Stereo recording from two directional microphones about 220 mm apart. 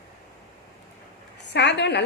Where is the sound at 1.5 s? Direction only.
50° left (ahead or behind).